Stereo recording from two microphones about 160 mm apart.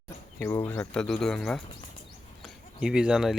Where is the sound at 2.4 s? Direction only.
5° right (ahead or behind).